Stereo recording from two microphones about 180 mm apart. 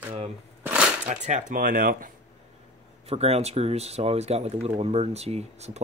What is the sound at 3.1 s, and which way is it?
Speech, 35° right (ahead or behind).